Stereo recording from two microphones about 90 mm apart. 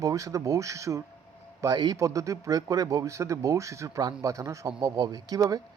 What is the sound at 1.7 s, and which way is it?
A man's voice, 50° right (ahead or behind).